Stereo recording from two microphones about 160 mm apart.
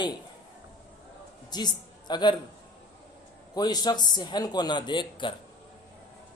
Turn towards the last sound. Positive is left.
turn(degrees=30)  # may be behind; listen again after turning